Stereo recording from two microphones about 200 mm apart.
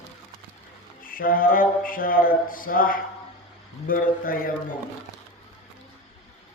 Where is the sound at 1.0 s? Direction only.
45° left (ahead or behind).